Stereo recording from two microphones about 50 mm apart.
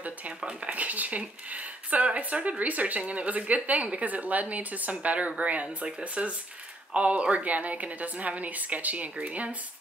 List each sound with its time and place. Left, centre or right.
0.4 s a woman's voice: centre
0.7 s a woman's voice: right